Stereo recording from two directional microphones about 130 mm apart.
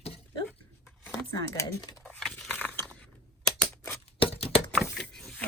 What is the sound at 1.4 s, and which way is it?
Speech, 30° left (ahead or behind).